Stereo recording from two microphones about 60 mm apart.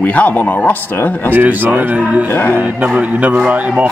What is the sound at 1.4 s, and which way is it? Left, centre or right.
Speech, right.